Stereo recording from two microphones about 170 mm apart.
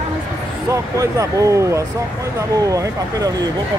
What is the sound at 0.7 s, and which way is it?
Speech, 20° right (ahead or behind).